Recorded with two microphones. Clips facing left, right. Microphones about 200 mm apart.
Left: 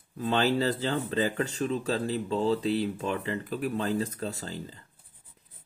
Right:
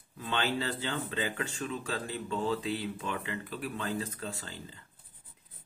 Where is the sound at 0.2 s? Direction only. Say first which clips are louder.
Left 7 dB; 40° left (ahead or behind).